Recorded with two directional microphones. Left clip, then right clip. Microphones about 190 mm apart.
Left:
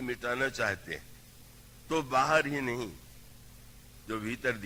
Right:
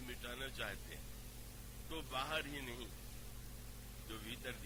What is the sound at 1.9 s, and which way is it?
Speech, 15° right (ahead or behind).